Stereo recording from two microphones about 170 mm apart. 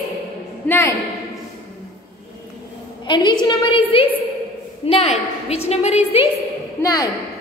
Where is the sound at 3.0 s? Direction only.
30° left (ahead or behind).